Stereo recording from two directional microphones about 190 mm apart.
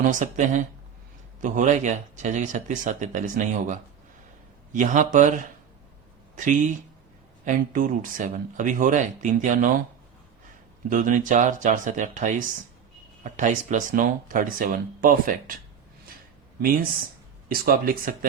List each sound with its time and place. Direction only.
0.0 s speech: 40° right (ahead or behind)
10.8 s speech: 45° right (ahead or behind)
16.6 s speech: 50° right (ahead or behind)